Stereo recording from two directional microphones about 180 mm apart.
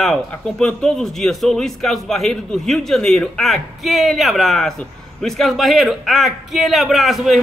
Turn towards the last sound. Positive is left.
turn(degrees=0)  # may be behind; listen again after turning